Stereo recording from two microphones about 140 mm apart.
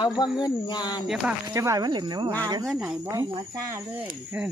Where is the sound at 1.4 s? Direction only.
20° right (ahead or behind).